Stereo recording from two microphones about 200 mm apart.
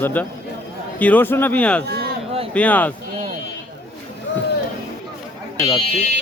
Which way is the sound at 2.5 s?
5° left (ahead or behind).